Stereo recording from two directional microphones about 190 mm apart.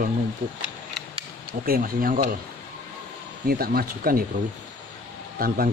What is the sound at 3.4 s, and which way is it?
Speech, 50° right (ahead or behind).